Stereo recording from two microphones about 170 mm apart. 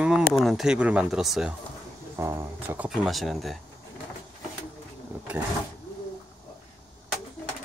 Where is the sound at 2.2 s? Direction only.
15° right (ahead or behind).